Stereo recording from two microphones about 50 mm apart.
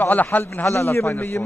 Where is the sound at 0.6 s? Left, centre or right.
Left.